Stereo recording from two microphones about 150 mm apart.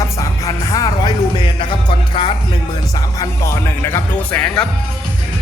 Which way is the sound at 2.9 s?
20° left (ahead or behind).